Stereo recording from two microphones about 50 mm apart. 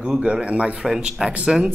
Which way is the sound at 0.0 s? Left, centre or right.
Centre.